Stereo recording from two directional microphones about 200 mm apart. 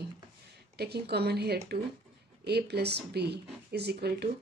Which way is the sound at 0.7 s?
55° right (ahead or behind).